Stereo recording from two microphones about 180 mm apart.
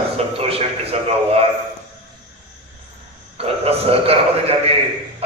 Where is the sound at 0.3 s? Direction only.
35° right (ahead or behind).